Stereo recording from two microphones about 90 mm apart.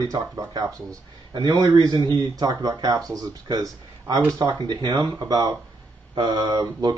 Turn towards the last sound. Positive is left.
turn(degrees=-50)  # may be behind; listen again after turning